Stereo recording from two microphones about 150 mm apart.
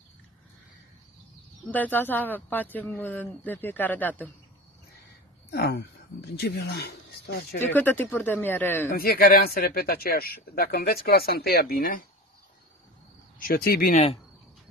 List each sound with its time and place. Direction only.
1.7 s speech: 10° left (ahead or behind)
5.5 s speech: 90° left
7.7 s speech: 10° left (ahead or behind)
8.9 s speech: 85° left
13.4 s speech: 80° left
13.9 s speech: 40° left (ahead or behind)